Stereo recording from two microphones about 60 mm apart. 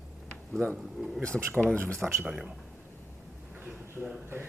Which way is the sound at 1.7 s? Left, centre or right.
Right.